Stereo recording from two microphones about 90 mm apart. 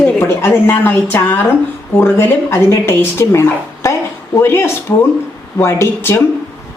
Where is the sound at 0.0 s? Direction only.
25° left (ahead or behind).